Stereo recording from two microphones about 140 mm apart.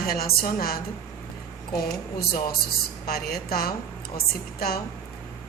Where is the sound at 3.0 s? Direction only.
90° left.